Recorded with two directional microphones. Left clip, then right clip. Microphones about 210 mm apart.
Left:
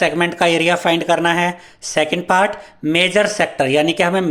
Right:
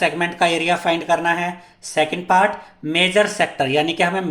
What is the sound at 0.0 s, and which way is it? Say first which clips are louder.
Speech: left 3 dB; 35° left (ahead or behind).